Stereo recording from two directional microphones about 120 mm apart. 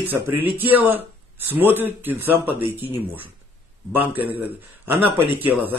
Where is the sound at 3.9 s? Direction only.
15° right (ahead or behind).